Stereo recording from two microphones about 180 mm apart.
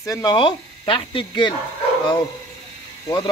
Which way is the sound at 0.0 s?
20° left (ahead or behind).